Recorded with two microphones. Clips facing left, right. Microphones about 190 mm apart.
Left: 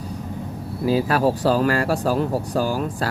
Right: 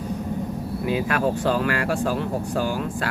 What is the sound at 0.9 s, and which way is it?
Speech, 35° left (ahead or behind).